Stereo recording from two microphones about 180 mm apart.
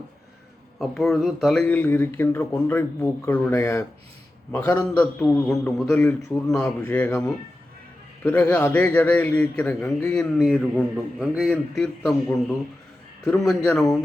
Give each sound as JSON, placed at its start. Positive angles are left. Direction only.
{"t": 0.8, "sound": "a man's voice", "side_deg": 0}
{"t": 6.0, "sound": "a man's voice", "side_deg": 15}